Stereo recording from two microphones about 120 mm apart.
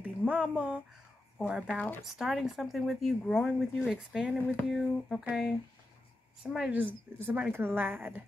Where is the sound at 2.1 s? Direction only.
5° right (ahead or behind).